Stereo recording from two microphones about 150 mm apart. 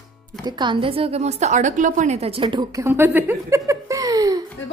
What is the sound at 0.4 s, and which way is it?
A woman's voice, 30° right (ahead or behind).